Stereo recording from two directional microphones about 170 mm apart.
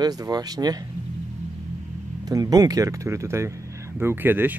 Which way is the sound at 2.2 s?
20° right (ahead or behind).